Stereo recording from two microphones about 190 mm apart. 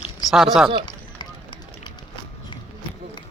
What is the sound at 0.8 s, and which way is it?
Run, 25° left (ahead or behind).